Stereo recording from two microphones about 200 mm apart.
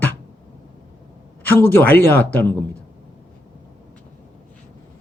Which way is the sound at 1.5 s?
10° left (ahead or behind).